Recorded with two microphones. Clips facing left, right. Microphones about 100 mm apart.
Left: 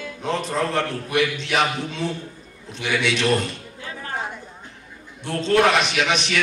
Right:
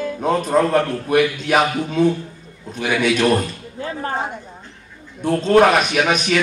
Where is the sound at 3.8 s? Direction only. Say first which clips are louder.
Right 7 dB; 35° right (ahead or behind).